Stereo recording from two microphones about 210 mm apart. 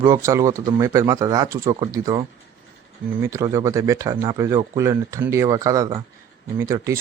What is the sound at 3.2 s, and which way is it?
Speech, 15° right (ahead or behind).